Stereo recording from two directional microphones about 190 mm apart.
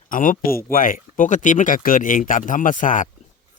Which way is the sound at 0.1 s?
45° left (ahead or behind).